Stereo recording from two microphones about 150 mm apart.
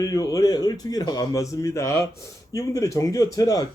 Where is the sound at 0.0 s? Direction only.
25° left (ahead or behind).